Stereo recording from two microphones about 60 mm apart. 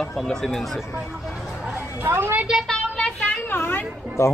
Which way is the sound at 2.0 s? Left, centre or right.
Right.